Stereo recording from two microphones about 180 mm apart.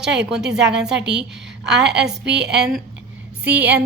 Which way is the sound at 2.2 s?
70° right (ahead or behind).